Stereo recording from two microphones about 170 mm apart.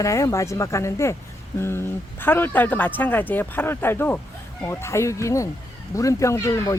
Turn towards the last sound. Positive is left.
turn(degrees=15)  # may be behind; listen again after turning